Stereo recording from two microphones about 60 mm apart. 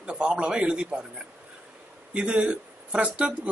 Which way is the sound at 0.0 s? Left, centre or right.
Centre.